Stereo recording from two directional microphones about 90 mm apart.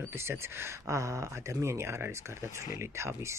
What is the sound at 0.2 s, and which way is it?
Speech, 30° right (ahead or behind).